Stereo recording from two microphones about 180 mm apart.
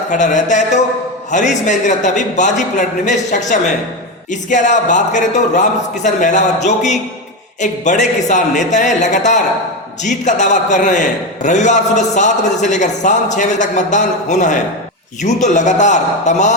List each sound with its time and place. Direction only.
0.1 s a man's voice: 45° left (ahead or behind)